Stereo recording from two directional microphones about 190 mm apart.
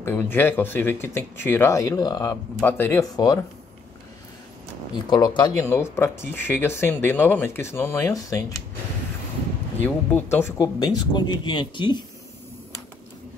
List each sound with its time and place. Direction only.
0.0 s speech: 10° left (ahead or behind)
4.9 s speech: 25° left (ahead or behind)
5.6 s speech: 15° left (ahead or behind)
9.8 s speech: 10° left (ahead or behind)